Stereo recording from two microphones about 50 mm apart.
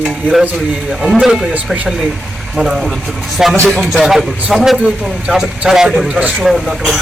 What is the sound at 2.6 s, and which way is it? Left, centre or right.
Speech, centre.